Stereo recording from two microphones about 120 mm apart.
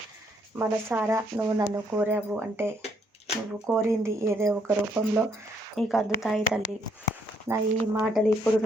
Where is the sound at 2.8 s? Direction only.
60° left (ahead or behind).